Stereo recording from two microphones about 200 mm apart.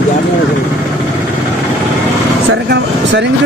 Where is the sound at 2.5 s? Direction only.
65° right (ahead or behind).